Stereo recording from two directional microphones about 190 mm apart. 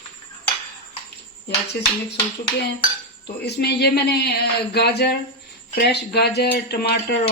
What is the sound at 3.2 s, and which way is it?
Speech, 60° left (ahead or behind).